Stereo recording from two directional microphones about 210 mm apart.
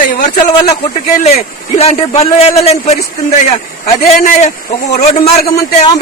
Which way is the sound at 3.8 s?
35° left (ahead or behind).